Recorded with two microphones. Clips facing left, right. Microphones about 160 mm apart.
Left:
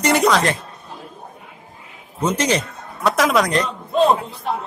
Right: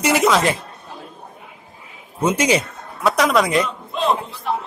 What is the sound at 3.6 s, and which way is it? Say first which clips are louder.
Speech: left 5 dB; 35° left (ahead or behind).